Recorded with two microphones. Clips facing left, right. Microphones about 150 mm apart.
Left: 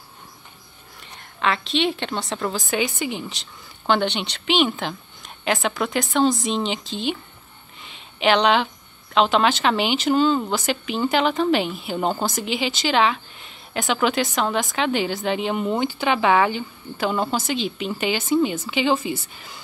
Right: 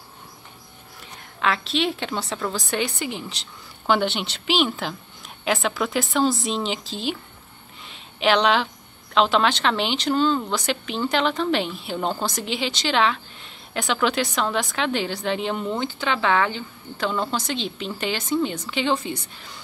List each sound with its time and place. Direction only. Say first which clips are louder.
1.0 s a woman's voice: left 1 dB; centre (ahead or behind)
7.8 s a sound: left 1 dB; centre (ahead or behind)
9.1 s a woman's voice: left 1 dB; centre (ahead or behind)